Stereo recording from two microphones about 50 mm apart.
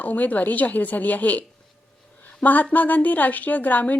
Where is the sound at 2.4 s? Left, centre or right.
Left.